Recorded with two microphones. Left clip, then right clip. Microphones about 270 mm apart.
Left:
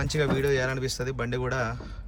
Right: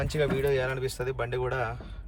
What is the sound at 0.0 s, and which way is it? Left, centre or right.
Speech, centre.